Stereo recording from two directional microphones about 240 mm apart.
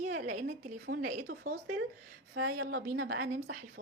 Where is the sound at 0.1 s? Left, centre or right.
Right.